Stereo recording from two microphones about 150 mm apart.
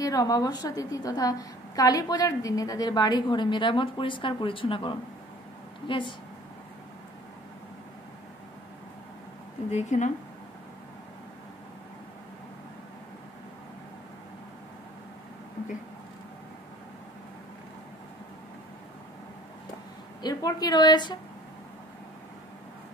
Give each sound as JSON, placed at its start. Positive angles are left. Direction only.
{"t": 0.0, "sound": "a woman's voice", "side_deg": 25}
{"t": 9.7, "sound": "speech", "side_deg": 50}
{"t": 20.2, "sound": "a woman's voice", "side_deg": 25}